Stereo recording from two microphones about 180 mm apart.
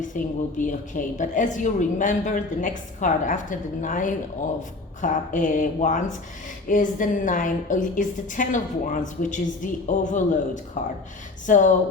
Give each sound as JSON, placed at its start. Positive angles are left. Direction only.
{"t": 0.1, "sound": "a woman's voice", "side_deg": 45}